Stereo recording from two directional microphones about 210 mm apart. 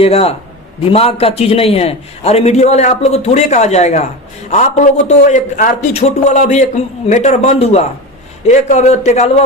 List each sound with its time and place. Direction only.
0.0 s a man's voice: 30° left (ahead or behind)